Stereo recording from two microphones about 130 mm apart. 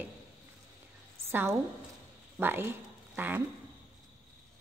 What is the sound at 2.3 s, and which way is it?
Speech, 15° right (ahead or behind).